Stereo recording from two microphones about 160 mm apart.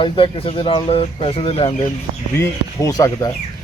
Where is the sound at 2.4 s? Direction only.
20° left (ahead or behind).